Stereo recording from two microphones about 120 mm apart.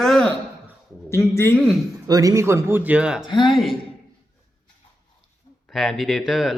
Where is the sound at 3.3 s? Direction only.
40° left (ahead or behind).